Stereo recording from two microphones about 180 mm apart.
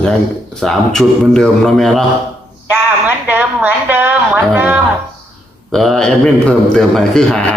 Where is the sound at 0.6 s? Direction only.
Centre (ahead or behind).